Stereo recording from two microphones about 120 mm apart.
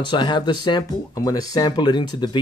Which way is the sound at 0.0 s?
40° left (ahead or behind).